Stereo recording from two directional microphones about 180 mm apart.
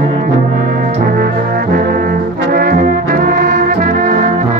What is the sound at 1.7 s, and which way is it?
Trombone, 50° right (ahead or behind).